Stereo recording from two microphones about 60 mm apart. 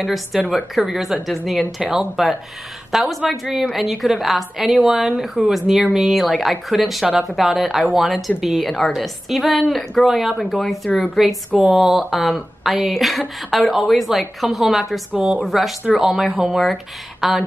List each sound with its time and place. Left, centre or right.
0.0 s a woman's voice: centre
15.1 s a woman's voice: centre
15.4 s a woman's voice: centre